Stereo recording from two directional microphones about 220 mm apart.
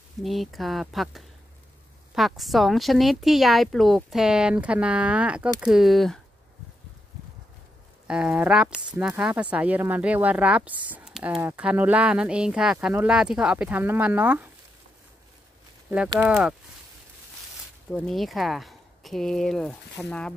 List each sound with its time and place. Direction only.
0.2 s speech: centre (ahead or behind)
8.1 s speech: 5° right (ahead or behind)
16.1 s speech: 10° right (ahead or behind)
17.9 s speech: centre (ahead or behind)